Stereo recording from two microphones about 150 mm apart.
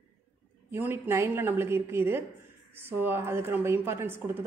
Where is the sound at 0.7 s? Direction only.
15° right (ahead or behind).